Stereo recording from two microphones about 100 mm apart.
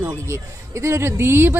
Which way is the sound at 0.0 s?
25° right (ahead or behind).